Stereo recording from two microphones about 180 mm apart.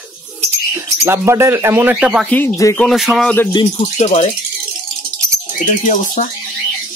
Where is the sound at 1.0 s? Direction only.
15° right (ahead or behind).